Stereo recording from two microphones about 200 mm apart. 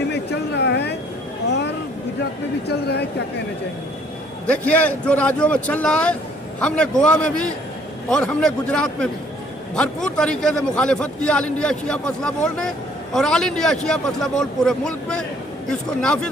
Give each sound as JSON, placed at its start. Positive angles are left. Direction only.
{"t": 0.1, "sound": "a sound", "side_deg": 55}
{"t": 2.6, "sound": "speech", "side_deg": 55}
{"t": 4.4, "sound": "a man's voice", "side_deg": 5}